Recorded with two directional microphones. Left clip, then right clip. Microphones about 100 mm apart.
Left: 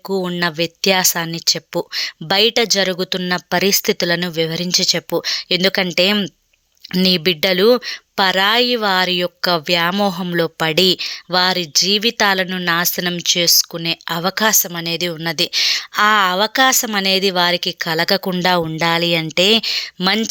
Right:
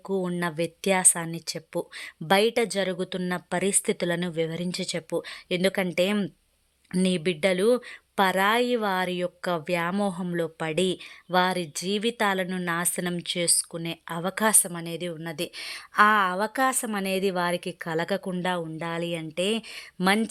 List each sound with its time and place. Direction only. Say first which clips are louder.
0.2 s a woman's voice: left 11 dB; 15° left (ahead or behind)
1.5 s speech: left 11 dB; 30° left (ahead or behind)
2.3 s a woman's voice: left 7 dB; 10° left (ahead or behind)
2.7 s speech: left 10 dB; 25° left (ahead or behind)
8.1 s a woman's voice: left 8 dB; 10° left (ahead or behind); by 10.8 s 35° left (ahead or behind)
10.8 s speech: left 12 dB; 20° left (ahead or behind)
14.4 s a woman's voice: left 7 dB; 5° left (ahead or behind); by 18.4 s 30° left (ahead or behind)
18.4 s speech: left 15 dB; 50° left (ahead or behind)
18.9 s speech: left 16 dB; 30° left (ahead or behind)
19.7 s a woman's voice: left 7 dB; 15° left (ahead or behind)